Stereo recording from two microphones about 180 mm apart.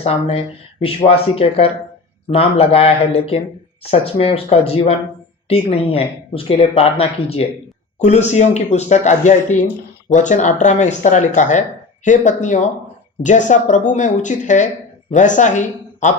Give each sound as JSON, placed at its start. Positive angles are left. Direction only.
{"t": 0.0, "sound": "speech", "side_deg": 35}
{"t": 4.0, "sound": "speech", "side_deg": 35}
{"t": 9.5, "sound": "speech", "side_deg": 10}
{"t": 10.1, "sound": "speech", "side_deg": 45}